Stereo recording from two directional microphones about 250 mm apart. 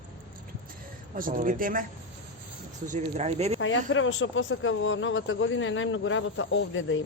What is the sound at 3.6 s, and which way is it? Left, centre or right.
Speech, left.